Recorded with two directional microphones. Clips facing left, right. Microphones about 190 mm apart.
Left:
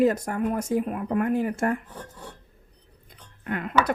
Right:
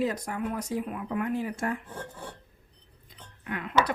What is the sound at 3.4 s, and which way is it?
Speech, 50° left (ahead or behind).